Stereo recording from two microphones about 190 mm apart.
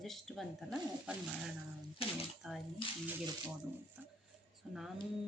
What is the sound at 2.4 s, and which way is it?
Speech, centre (ahead or behind).